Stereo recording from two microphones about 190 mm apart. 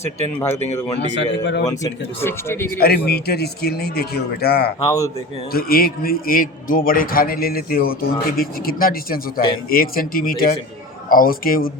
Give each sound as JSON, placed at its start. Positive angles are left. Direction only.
{"t": 0.5, "sound": "speech", "side_deg": 35}
{"t": 0.9, "sound": "a man's voice", "side_deg": 70}
{"t": 2.2, "sound": "speech", "side_deg": 15}
{"t": 2.8, "sound": "a man's voice", "side_deg": 55}
{"t": 4.8, "sound": "speech", "side_deg": 20}
{"t": 5.5, "sound": "a man's voice", "side_deg": 50}